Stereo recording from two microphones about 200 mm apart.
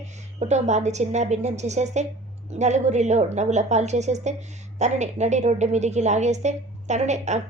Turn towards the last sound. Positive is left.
turn(degrees=-35)  # may be behind; listen again after turning